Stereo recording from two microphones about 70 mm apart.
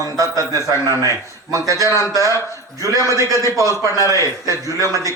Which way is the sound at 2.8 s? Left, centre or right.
Right.